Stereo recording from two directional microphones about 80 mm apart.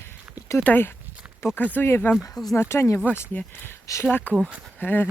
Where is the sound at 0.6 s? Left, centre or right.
Left.